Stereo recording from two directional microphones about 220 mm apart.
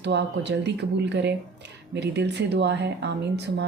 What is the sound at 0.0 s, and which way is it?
Speech, 50° right (ahead or behind).